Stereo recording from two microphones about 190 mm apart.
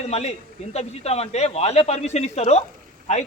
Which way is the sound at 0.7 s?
35° left (ahead or behind).